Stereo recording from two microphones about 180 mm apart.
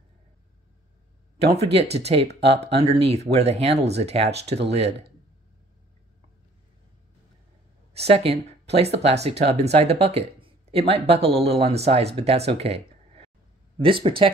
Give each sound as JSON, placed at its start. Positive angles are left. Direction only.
{"t": 1.4, "sound": "speech", "side_deg": -35}
{"t": 7.9, "sound": "speech", "side_deg": -35}